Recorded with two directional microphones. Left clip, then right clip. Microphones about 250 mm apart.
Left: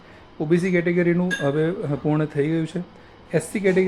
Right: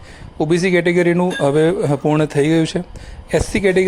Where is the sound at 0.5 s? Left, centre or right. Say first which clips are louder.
Right 6 dB; right.